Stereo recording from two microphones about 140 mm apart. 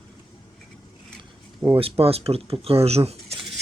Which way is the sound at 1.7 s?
45° right (ahead or behind).